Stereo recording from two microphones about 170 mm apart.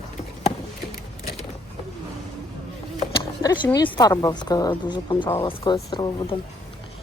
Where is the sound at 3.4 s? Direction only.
25° left (ahead or behind).